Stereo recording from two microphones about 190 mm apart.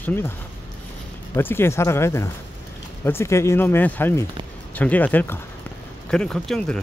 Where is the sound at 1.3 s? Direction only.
10° left (ahead or behind).